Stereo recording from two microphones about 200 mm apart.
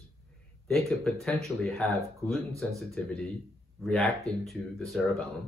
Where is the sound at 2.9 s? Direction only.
5° left (ahead or behind).